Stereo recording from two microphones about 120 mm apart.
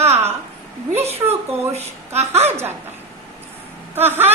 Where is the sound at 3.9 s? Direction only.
20° right (ahead or behind).